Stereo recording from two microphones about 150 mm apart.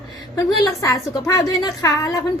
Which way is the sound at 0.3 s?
20° left (ahead or behind).